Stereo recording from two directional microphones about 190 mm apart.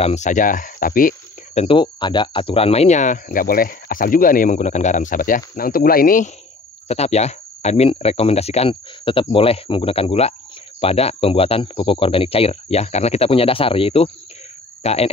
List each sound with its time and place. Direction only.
0.0 s speech: 40° left (ahead or behind)
6.9 s speech: 35° left (ahead or behind)